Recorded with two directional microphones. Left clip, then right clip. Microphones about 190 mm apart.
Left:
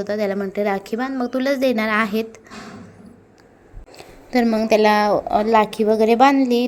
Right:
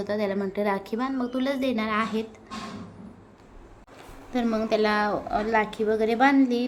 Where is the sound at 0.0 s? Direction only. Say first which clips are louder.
Left 5 dB; 15° left (ahead or behind).